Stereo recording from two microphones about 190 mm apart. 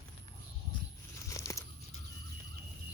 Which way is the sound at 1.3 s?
15° left (ahead or behind).